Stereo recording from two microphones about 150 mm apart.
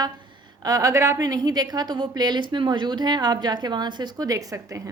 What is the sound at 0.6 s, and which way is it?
A woman's voice, 25° right (ahead or behind).